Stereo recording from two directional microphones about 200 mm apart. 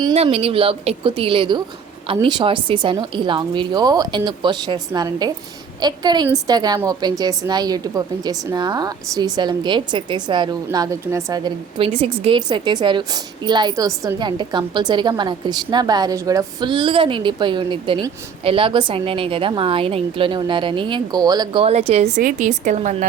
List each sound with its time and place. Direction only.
0.0 s a woman's voice: 30° right (ahead or behind)